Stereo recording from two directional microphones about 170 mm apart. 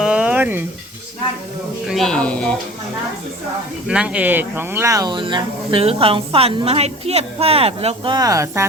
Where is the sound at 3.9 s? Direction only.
5° right (ahead or behind).